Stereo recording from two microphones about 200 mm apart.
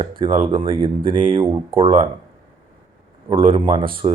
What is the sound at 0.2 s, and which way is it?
Speech, 25° right (ahead or behind).